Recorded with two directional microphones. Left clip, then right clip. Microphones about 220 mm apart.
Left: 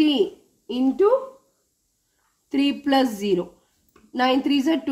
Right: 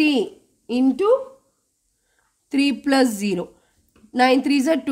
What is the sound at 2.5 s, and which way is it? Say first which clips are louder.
A woman's voice: right 1 dB; 40° right (ahead or behind).